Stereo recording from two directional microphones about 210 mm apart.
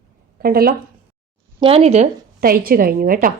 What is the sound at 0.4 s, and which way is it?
Speech, 45° right (ahead or behind).